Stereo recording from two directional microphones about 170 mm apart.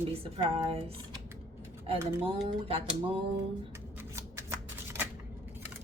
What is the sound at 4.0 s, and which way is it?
Shuffling cards, 15° right (ahead or behind).